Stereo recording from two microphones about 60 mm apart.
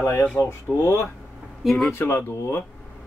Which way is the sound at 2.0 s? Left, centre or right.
Left.